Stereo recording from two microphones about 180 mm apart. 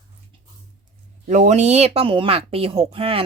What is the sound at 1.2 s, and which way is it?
Speech, 40° right (ahead or behind).